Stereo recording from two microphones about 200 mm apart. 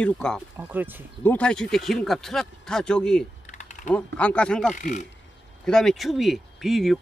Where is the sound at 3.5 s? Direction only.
35° left (ahead or behind).